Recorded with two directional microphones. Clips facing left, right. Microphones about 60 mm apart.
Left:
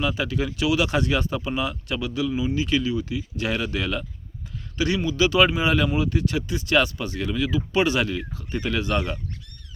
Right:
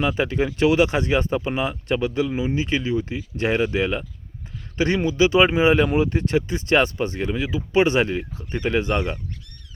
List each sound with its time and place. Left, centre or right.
0.0 s speech: right